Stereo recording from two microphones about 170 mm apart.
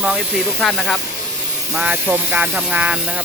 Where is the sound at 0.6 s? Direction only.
5° left (ahead or behind).